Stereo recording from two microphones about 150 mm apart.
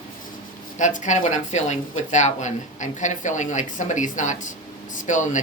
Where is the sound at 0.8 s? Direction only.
55° left (ahead or behind).